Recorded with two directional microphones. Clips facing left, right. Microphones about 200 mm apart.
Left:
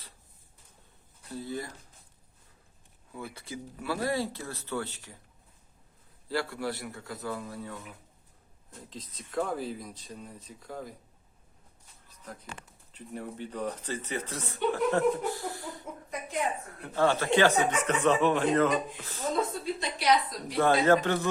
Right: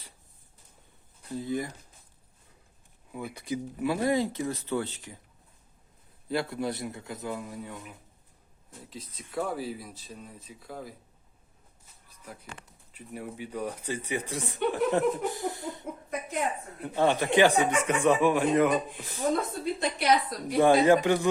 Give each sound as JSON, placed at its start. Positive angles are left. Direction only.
{"t": 1.3, "sound": "speech", "side_deg": -20}
{"t": 3.1, "sound": "speech", "side_deg": -15}
{"t": 6.2, "sound": "a man's voice", "side_deg": -20}
{"t": 8.9, "sound": "speech", "side_deg": -10}
{"t": 12.0, "sound": "a sound", "side_deg": -10}
{"t": 12.9, "sound": "a man's voice", "side_deg": -10}
{"t": 19.8, "sound": "a woman's voice", "side_deg": -55}
{"t": 20.6, "sound": "speech", "side_deg": -15}